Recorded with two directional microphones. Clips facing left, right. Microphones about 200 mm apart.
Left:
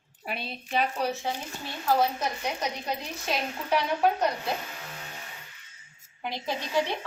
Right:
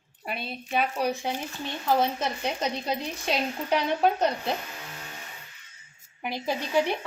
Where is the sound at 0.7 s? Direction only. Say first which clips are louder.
Right 1 dB; 10° right (ahead or behind).